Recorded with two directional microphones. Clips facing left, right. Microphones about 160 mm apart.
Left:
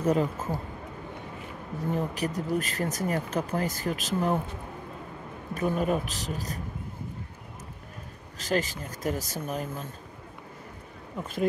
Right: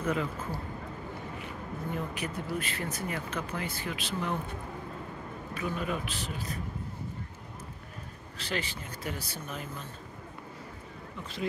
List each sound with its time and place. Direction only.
0.0 s speech: 40° left (ahead or behind)
2.0 s speech: 40° left (ahead or behind)
5.5 s speech: 45° left (ahead or behind)
8.4 s speech: 45° left (ahead or behind)
11.1 s speech: 50° left (ahead or behind)